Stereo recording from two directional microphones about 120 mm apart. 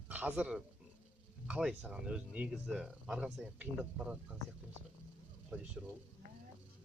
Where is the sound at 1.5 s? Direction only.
10° right (ahead or behind).